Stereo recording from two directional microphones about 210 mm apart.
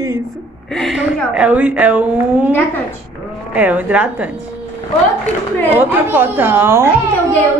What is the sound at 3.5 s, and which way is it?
Speech, 5° right (ahead or behind).